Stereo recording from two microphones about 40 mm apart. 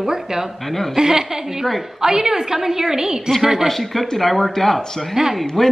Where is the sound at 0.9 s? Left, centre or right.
Centre.